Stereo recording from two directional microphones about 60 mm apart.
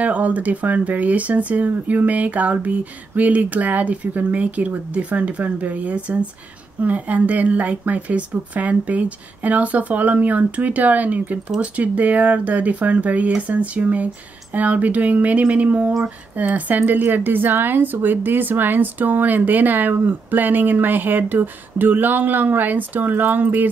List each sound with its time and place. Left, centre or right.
0.0 s speech: right